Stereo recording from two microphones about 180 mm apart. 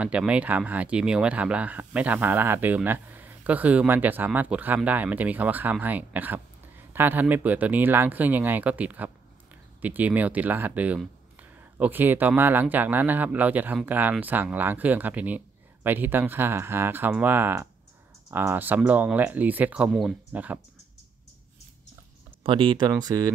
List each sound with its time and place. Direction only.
0.0 s speech: 5° right (ahead or behind)
22.4 s speech: 25° right (ahead or behind)